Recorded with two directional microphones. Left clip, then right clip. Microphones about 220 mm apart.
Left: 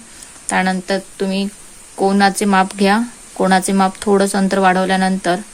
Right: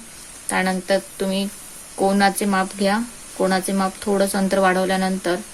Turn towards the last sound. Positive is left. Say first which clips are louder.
# left 5 dB
turn(degrees=25)  # may be behind; listen again after turning